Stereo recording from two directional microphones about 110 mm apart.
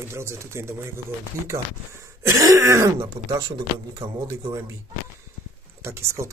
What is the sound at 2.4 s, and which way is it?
Speech, 30° right (ahead or behind).